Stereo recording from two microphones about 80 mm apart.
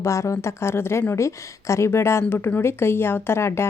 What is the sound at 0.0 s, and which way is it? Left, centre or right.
A woman's voice, left.